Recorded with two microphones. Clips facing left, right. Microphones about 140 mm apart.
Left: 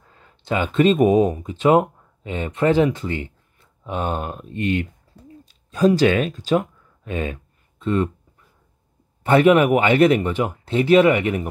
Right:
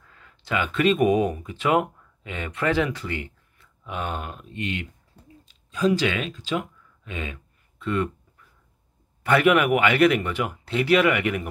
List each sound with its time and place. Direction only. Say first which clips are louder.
0.0 s speech: left 3 dB; 30° left (ahead or behind)
7.8 s speech: left 5 dB; 30° left (ahead or behind)
9.2 s speech: left 5 dB; 30° left (ahead or behind)